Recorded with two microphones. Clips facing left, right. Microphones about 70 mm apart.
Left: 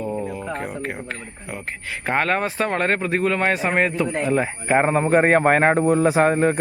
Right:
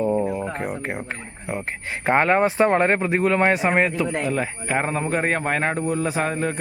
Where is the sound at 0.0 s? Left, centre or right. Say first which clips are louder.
Right 5 dB; centre.